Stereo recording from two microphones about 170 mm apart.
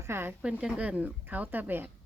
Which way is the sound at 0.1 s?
15° right (ahead or behind).